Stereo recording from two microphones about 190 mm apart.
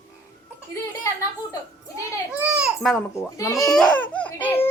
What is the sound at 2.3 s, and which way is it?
Babbling, centre (ahead or behind).